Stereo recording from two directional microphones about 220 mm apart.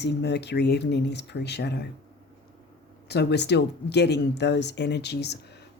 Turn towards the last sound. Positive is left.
turn(degrees=50)  # may be behind; listen again after turning